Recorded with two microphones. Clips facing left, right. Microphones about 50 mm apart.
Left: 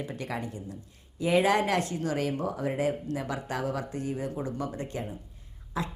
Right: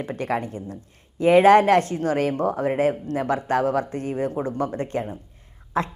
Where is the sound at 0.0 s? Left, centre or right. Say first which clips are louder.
Right 8 dB; right.